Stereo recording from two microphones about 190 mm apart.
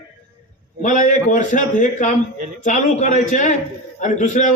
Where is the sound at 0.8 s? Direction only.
40° left (ahead or behind).